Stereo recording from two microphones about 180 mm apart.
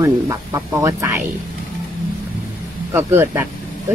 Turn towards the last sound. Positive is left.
turn(degrees=-15)  # may be behind; listen again after turning